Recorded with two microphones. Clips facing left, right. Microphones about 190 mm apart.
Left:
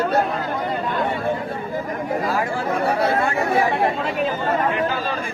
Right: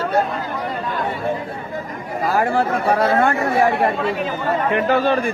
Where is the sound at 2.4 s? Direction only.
65° right (ahead or behind).